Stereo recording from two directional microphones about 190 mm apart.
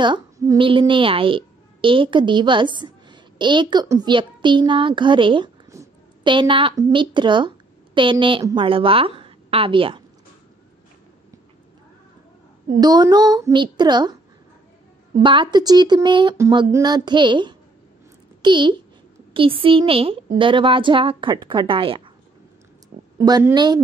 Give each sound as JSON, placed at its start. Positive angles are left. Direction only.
{"t": 0.0, "sound": "a woman's voice", "side_deg": -25}
{"t": 12.8, "sound": "speech", "side_deg": -20}
{"t": 15.2, "sound": "speech", "side_deg": -25}
{"t": 23.1, "sound": "speech", "side_deg": -20}